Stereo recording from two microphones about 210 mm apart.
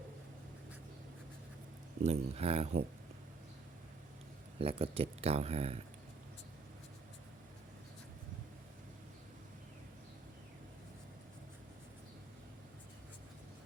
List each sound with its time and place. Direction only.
2.0 s speech: 30° right (ahead or behind)
4.5 s speech: 25° right (ahead or behind)